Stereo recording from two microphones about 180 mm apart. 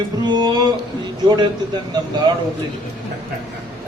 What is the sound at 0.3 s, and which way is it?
Speech, 25° right (ahead or behind).